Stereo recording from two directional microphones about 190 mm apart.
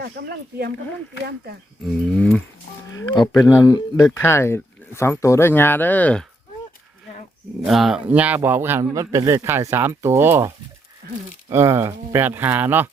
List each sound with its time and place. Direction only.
0.0 s speech: 60° right (ahead or behind)
2.9 s speech: 20° left (ahead or behind)
7.6 s speech: centre (ahead or behind)
11.0 s speech: 60° right (ahead or behind)
11.4 s speech: 15° right (ahead or behind)